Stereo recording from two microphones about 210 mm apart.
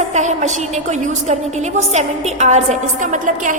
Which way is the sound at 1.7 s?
35° right (ahead or behind).